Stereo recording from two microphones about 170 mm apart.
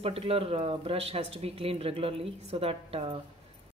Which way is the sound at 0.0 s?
35° right (ahead or behind).